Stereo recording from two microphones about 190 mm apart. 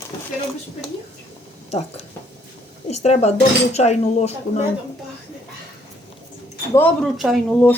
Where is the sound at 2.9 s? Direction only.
35° left (ahead or behind).